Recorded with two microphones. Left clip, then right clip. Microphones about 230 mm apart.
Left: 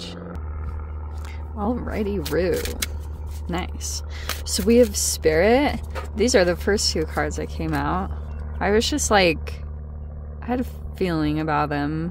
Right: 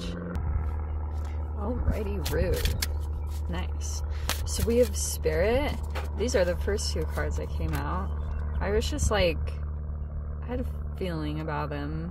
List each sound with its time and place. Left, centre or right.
0.0 s music: left
1.6 s speech: left
3.4 s speech: left